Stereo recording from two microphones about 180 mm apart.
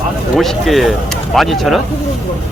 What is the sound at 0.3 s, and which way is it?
Speech, centre (ahead or behind).